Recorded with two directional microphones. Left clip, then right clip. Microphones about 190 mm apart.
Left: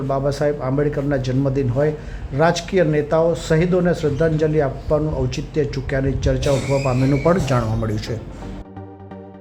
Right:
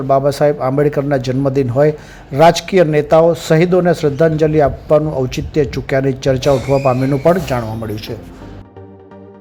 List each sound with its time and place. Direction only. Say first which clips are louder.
0.1 s speech: right 8 dB; 25° right (ahead or behind)
7.3 s speech: right 6 dB; 10° right (ahead or behind)